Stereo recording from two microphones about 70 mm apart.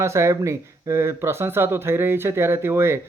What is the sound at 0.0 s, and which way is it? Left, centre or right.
Speech, right.